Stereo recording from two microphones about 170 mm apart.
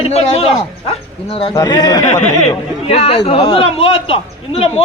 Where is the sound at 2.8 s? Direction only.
35° left (ahead or behind).